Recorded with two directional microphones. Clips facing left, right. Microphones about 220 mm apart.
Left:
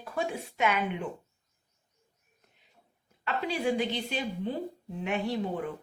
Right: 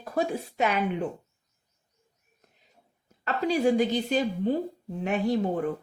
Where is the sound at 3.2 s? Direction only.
40° right (ahead or behind).